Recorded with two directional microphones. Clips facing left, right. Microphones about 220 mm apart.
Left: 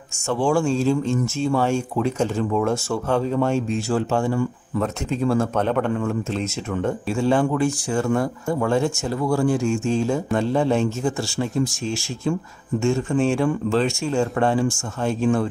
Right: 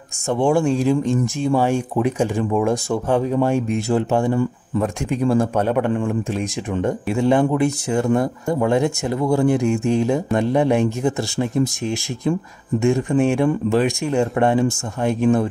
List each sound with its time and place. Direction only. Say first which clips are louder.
0.3 s speech: right 3 dB; 20° right (ahead or behind)